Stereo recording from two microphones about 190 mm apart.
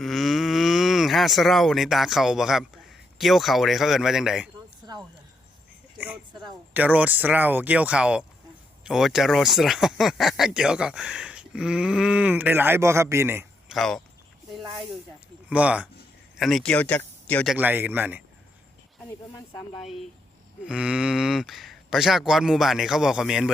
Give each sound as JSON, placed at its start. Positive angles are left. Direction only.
{"t": 0.0, "sound": "speech", "side_deg": 0}
{"t": 4.8, "sound": "a sound", "side_deg": -20}
{"t": 6.0, "sound": "a sound", "side_deg": -10}
{"t": 6.7, "sound": "speech", "side_deg": -10}
{"t": 13.7, "sound": "speech", "side_deg": 0}
{"t": 15.4, "sound": "speech", "side_deg": -5}
{"t": 17.5, "sound": "speech", "side_deg": -10}
{"t": 20.7, "sound": "speech", "side_deg": -5}